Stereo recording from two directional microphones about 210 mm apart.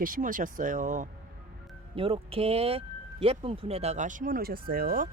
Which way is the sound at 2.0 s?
25° right (ahead or behind).